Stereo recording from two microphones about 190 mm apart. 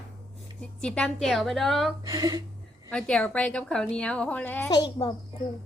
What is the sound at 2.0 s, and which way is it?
Speech, 15° right (ahead or behind).